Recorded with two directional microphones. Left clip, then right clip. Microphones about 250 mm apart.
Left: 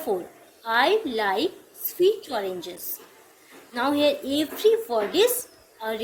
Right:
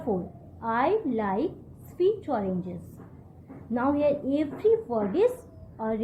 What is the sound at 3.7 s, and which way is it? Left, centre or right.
A woman's voice, left.